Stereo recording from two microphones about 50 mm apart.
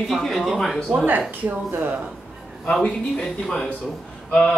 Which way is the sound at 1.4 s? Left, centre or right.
Right.